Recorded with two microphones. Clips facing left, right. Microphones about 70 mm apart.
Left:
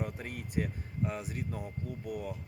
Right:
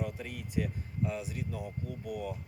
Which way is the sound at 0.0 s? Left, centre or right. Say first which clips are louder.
Even; left.